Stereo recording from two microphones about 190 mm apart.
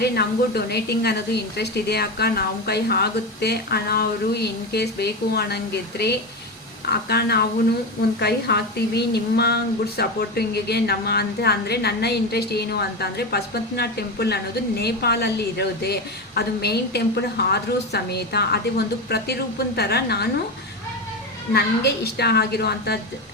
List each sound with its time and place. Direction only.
0.0 s a woman's voice: 60° left (ahead or behind)
21.5 s a woman's voice: 60° left (ahead or behind)